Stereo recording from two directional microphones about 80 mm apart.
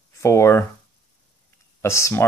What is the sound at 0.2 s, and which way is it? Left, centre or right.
Speech, left.